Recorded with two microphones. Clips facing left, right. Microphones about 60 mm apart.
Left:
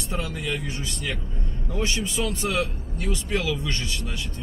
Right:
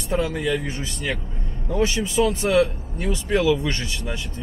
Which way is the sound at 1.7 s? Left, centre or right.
Centre.